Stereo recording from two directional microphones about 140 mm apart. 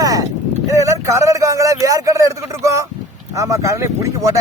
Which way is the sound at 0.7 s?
20° right (ahead or behind).